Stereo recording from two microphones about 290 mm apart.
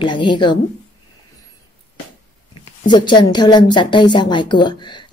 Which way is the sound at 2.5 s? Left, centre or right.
Centre.